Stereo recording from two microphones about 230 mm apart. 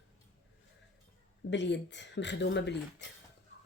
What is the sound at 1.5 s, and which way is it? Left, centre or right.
Speech, left.